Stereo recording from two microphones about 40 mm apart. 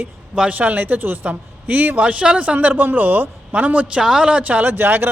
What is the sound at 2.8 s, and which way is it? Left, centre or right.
A man's voice, right.